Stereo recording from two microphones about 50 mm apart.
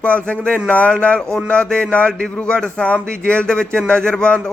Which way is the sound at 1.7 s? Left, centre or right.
Left.